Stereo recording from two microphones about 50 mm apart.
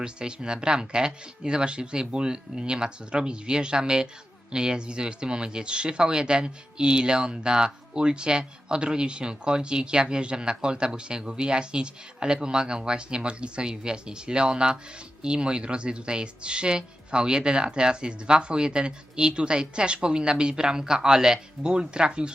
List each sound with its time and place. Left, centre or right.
0.0 s speech: centre